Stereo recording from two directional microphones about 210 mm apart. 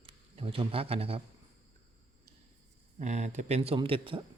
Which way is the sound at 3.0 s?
35° right (ahead or behind).